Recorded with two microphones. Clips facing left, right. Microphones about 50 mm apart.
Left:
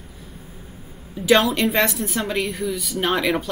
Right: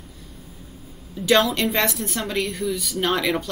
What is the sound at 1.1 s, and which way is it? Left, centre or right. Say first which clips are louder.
Speech: left 2 dB; centre.